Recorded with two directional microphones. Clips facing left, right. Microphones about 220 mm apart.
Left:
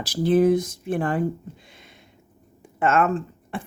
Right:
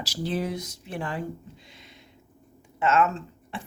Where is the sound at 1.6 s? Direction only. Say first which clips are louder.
Left 1 dB; 50° left (ahead or behind).